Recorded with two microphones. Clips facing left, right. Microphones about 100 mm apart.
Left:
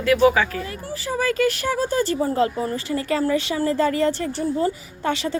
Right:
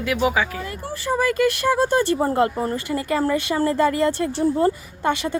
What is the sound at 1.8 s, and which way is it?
Speech, 65° right (ahead or behind).